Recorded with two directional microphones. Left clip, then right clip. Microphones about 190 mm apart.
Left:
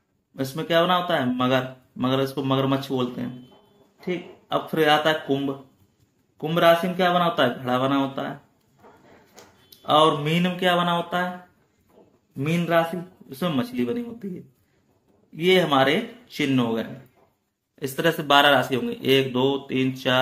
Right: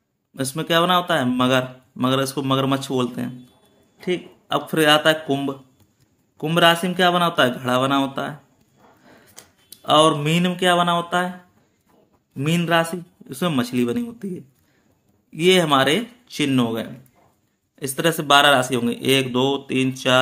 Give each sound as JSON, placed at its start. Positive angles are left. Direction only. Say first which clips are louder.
{"t": 0.4, "sound": "speech", "louder": "right 2 dB", "side_deg": -35}
{"t": 9.3, "sound": "speech", "louder": "right 2 dB", "side_deg": -35}
{"t": 12.4, "sound": "speech", "louder": "right 2 dB", "side_deg": -35}
{"t": 15.3, "sound": "speech", "louder": "right 3 dB", "side_deg": -35}
{"t": 17.7, "sound": "speech", "louder": "right 2 dB", "side_deg": -20}